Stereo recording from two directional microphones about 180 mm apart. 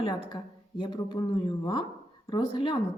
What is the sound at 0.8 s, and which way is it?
Speech, 25° left (ahead or behind).